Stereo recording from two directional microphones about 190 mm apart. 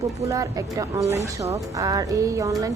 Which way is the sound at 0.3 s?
15° right (ahead or behind).